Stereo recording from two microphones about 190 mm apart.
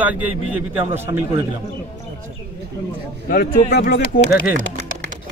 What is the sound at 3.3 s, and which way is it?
Speech, 55° left (ahead or behind).